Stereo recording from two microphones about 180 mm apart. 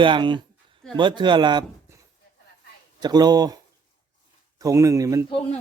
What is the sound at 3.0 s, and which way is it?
Speech, 20° right (ahead or behind).